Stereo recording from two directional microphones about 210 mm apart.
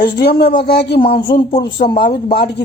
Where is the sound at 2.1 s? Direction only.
45° left (ahead or behind).